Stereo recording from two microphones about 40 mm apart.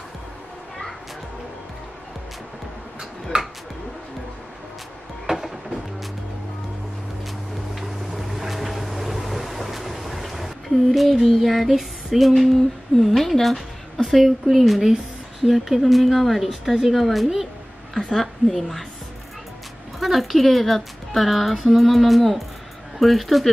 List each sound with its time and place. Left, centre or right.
7.8 s boat: centre
12.9 s speech: centre
20.0 s speech: centre